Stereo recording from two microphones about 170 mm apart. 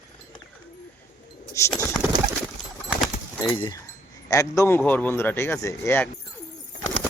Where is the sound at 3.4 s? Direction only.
25° left (ahead or behind).